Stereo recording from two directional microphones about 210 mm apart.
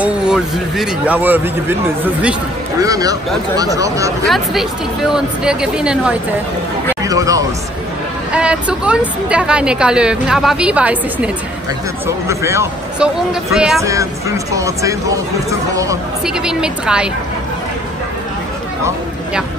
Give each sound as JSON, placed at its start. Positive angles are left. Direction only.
{"t": 0.0, "sound": "speech", "side_deg": -5}
{"t": 2.8, "sound": "speech", "side_deg": -15}
{"t": 4.3, "sound": "a woman's voice", "side_deg": 0}
{"t": 7.0, "sound": "speech", "side_deg": -15}
{"t": 8.3, "sound": "a woman's voice", "side_deg": -5}
{"t": 12.3, "sound": "speech", "side_deg": -15}
{"t": 13.3, "sound": "a woman's voice", "side_deg": 0}
{"t": 13.8, "sound": "speech", "side_deg": -15}
{"t": 16.4, "sound": "a woman's voice", "side_deg": -5}